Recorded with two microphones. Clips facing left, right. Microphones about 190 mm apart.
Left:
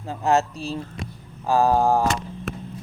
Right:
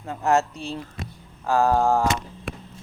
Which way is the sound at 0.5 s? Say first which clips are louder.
Left 2 dB; 35° left (ahead or behind).